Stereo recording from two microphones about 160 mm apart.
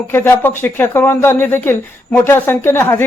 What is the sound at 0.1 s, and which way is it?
Speech, 15° left (ahead or behind).